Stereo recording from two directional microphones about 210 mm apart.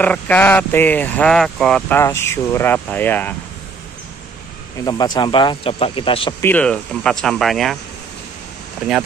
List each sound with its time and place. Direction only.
0.0 s speech: 5° left (ahead or behind)
4.8 s speech: 20° left (ahead or behind)
6.4 s speech: 5° left (ahead or behind)